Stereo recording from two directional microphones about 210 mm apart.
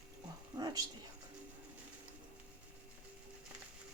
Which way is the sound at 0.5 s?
20° right (ahead or behind).